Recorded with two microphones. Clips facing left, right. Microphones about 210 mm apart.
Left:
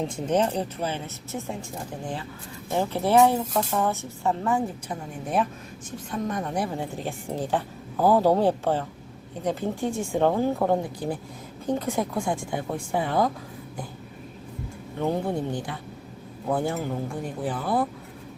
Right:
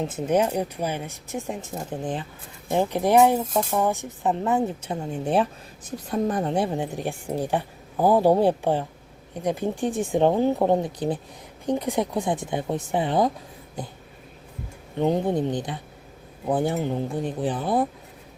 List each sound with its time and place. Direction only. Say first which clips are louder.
0.0 s speech: right 2 dB; 5° right (ahead or behind)
14.9 s speech: right 4 dB; 20° right (ahead or behind)